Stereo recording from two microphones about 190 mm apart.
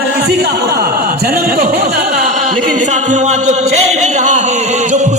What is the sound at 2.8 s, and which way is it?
A man's voice, 40° right (ahead or behind).